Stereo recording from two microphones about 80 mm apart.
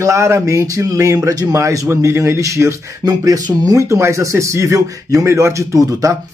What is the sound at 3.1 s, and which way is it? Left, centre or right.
Speech, right.